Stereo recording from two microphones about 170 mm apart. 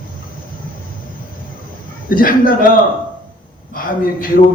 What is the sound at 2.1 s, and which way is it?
Speech, 55° left (ahead or behind).